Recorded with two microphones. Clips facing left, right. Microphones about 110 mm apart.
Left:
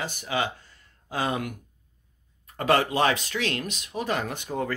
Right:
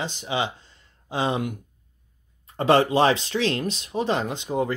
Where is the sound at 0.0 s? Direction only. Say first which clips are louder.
Right 2 dB; 20° right (ahead or behind).